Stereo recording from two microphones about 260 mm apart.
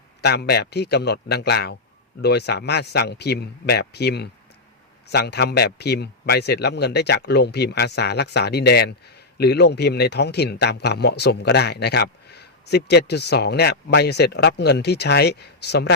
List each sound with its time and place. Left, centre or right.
0.2 s a man's voice: left